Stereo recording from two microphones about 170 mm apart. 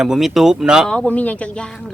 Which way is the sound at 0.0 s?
Centre (ahead or behind).